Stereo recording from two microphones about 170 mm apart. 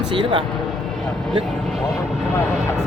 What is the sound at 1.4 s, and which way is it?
Speech, centre (ahead or behind).